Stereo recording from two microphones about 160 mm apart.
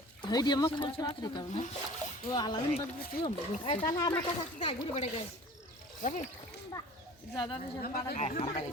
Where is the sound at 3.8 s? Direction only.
25° left (ahead or behind).